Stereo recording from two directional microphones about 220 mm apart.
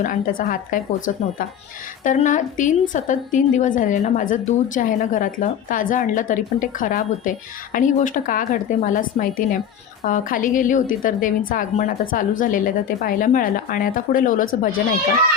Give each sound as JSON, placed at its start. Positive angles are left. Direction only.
{"t": 0.0, "sound": "a woman's voice", "side_deg": 40}